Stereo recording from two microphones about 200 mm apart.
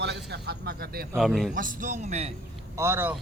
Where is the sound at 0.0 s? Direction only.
55° right (ahead or behind).